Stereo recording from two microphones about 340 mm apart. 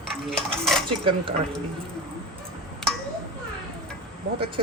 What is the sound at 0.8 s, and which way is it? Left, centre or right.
Speech, centre.